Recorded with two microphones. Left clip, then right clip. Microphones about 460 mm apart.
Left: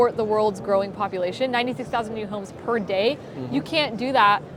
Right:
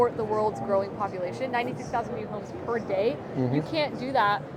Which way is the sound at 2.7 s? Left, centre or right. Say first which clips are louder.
Left 4 dB; left.